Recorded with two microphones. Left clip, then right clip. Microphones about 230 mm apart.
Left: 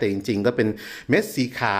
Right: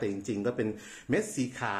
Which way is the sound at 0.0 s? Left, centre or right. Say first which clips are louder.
Left 10 dB; left.